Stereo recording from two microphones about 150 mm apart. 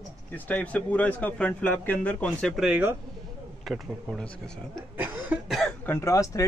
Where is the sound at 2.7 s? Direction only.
10° right (ahead or behind).